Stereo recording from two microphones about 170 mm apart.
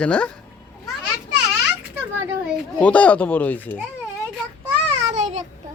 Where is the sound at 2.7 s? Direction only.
5° left (ahead or behind).